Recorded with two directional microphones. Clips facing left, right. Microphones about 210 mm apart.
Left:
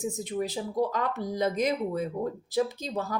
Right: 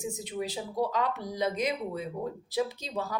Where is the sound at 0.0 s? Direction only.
45° left (ahead or behind).